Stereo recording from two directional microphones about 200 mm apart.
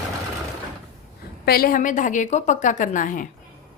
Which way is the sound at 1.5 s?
45° left (ahead or behind).